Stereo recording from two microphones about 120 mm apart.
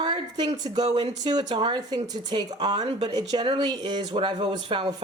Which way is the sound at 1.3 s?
35° right (ahead or behind).